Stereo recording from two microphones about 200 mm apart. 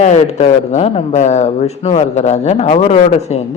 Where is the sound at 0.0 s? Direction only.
35° left (ahead or behind).